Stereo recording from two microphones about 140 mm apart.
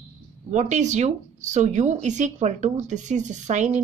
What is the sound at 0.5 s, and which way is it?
Speech, 60° right (ahead or behind).